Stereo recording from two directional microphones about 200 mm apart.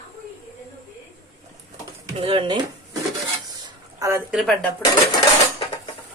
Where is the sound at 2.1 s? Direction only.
25° right (ahead or behind).